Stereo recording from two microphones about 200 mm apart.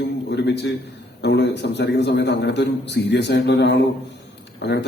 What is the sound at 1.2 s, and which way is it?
A man's voice, 60° left (ahead or behind).